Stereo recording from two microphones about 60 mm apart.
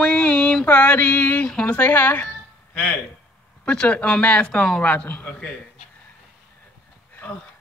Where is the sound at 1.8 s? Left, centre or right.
Left.